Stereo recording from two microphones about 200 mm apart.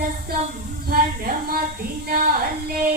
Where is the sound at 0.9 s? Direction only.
45° right (ahead or behind).